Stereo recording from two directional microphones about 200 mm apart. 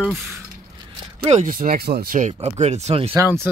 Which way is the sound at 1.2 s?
35° right (ahead or behind).